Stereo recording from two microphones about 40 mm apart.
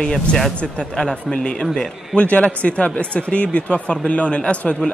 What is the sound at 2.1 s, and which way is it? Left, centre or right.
Speech, left.